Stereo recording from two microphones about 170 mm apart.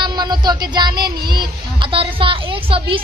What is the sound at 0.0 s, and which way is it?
Speech, 25° right (ahead or behind).